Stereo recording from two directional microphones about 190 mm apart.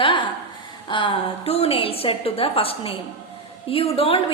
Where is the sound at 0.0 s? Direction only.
25° left (ahead or behind).